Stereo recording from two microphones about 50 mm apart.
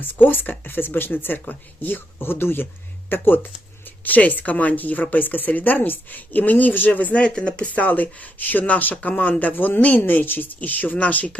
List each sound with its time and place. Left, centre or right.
0.0 s speech: left